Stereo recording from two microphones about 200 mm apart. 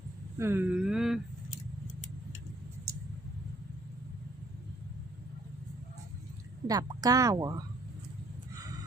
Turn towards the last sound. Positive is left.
turn(degrees=-20)  # may be behind; listen again after turning